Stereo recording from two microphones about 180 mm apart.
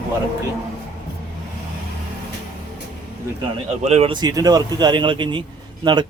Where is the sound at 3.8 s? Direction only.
35° right (ahead or behind).